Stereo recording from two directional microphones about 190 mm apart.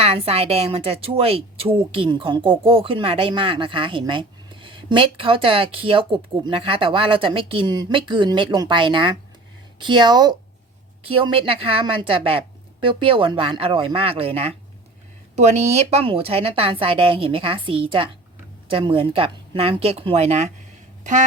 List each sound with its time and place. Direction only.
0.0 s a woman's voice: 30° right (ahead or behind)